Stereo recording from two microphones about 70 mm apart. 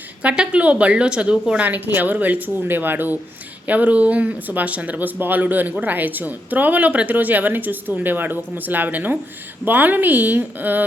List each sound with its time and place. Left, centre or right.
0.2 s speech: centre